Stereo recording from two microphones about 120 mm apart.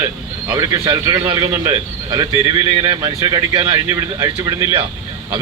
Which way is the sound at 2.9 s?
30° right (ahead or behind).